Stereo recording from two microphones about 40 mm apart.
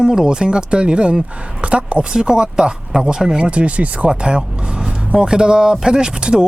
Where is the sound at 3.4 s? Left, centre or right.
Right.